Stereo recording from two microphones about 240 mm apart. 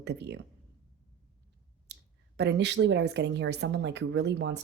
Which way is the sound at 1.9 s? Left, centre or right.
Right.